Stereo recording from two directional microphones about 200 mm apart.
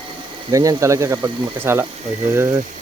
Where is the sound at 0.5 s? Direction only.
15° right (ahead or behind).